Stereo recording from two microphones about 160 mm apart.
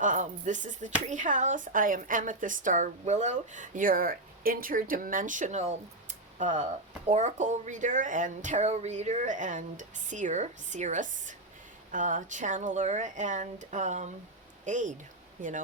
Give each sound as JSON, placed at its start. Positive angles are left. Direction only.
{"t": 0.0, "sound": "a woman's voice", "side_deg": -50}